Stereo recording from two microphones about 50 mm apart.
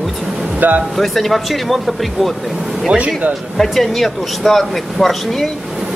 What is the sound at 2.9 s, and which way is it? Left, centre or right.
Speech, right.